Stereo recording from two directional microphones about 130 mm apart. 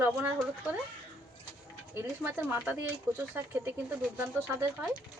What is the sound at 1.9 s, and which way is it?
Speech, 15° right (ahead or behind).